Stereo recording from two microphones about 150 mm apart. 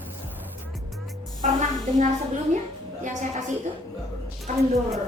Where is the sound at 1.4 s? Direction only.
55° right (ahead or behind).